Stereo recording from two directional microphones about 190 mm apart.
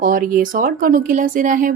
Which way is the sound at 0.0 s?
45° right (ahead or behind).